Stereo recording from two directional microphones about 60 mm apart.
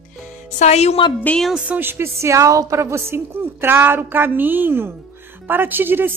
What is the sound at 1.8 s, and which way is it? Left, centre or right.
Speech, right.